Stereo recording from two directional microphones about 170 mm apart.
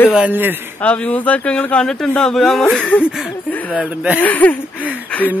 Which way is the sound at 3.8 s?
10° right (ahead or behind).